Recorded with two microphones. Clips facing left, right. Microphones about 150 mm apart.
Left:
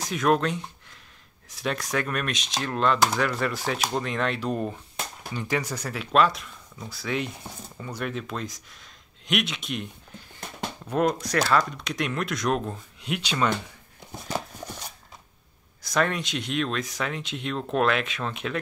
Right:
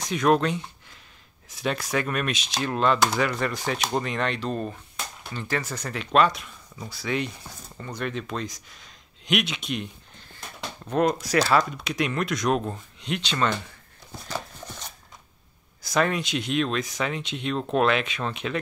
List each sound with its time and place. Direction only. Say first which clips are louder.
0.0 s speech: right 2 dB; centre (ahead or behind)
14.1 s horse: left 2 dB; 20° left (ahead or behind)
15.8 s speech: right 1 dB; centre (ahead or behind)